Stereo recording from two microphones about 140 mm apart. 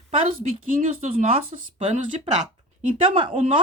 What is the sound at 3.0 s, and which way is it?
Speech, 40° right (ahead or behind).